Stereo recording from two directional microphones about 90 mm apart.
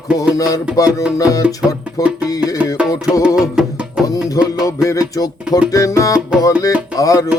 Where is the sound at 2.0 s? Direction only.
15° right (ahead or behind).